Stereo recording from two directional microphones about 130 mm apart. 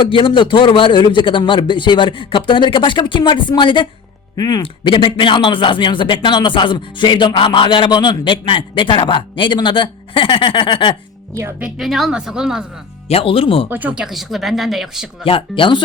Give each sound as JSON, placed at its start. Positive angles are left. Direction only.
{"t": 0.0, "sound": "speech", "side_deg": 40}
{"t": 4.6, "sound": "speech", "side_deg": 40}
{"t": 11.6, "sound": "speech", "side_deg": 0}
{"t": 13.1, "sound": "speech", "side_deg": 45}
{"t": 13.7, "sound": "speech", "side_deg": -15}
{"t": 15.2, "sound": "speech", "side_deg": 45}